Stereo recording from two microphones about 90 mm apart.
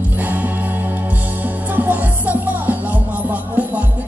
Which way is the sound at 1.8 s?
20° right (ahead or behind).